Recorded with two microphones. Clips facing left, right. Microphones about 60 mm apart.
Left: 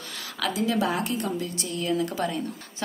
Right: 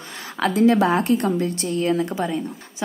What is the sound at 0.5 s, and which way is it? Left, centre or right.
A woman's voice, right.